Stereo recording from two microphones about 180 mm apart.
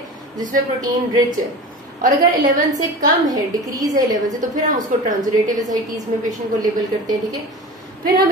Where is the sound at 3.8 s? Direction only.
20° right (ahead or behind).